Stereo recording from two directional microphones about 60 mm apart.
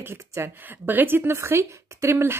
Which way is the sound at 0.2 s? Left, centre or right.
Right.